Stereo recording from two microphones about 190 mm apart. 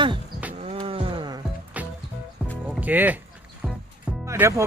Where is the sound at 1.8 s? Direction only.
10° right (ahead or behind).